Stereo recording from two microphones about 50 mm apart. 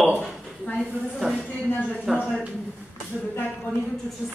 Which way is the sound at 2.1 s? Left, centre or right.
Centre.